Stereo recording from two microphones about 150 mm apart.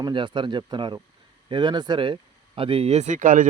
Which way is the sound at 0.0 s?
30° right (ahead or behind).